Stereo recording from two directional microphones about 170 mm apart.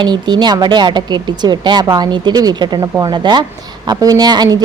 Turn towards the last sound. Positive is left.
turn(degrees=-25)  # may be behind; listen again after turning